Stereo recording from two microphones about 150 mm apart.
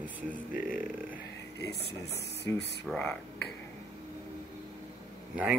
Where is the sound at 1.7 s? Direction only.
90° left.